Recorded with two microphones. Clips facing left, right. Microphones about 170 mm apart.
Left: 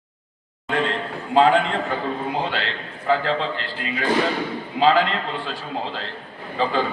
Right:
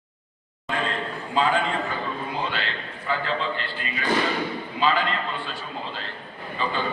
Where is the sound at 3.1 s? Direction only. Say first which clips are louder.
Left 6 dB; 90° left.